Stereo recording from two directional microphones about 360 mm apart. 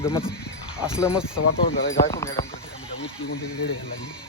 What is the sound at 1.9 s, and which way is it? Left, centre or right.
Speech, left.